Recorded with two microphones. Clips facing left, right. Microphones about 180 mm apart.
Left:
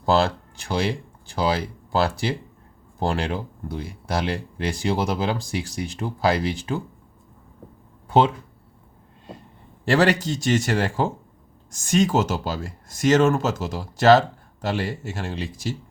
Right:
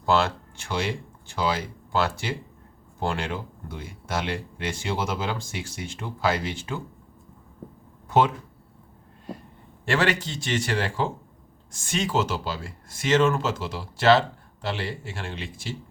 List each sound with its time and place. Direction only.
0.0 s speech: 35° left (ahead or behind)
8.0 s a sound: 30° left (ahead or behind)
9.8 s speech: 35° left (ahead or behind)